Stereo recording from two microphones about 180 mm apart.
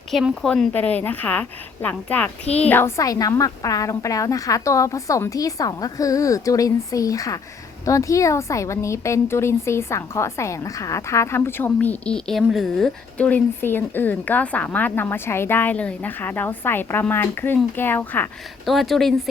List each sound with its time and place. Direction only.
0.1 s a woman's voice: centre (ahead or behind)